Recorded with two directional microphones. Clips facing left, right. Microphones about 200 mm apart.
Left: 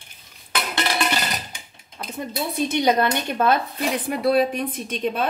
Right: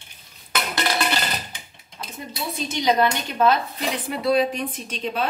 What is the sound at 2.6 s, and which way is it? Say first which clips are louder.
A woman's voice: left 1 dB; 55° left (ahead or behind).